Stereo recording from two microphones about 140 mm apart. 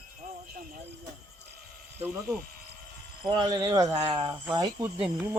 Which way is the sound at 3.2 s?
30° right (ahead or behind).